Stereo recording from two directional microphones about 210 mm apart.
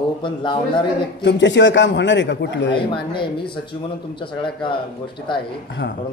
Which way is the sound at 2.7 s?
25° left (ahead or behind).